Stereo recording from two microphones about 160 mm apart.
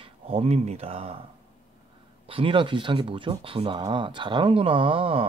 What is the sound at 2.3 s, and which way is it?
Speech, 35° right (ahead or behind).